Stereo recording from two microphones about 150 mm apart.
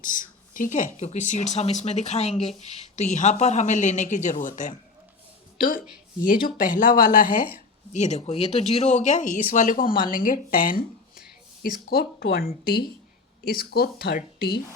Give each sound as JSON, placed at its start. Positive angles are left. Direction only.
{"t": 0.0, "sound": "speech", "side_deg": 60}
{"t": 5.5, "sound": "a woman's voice", "side_deg": 70}
{"t": 7.9, "sound": "speech", "side_deg": 50}
{"t": 11.9, "sound": "speech", "side_deg": 85}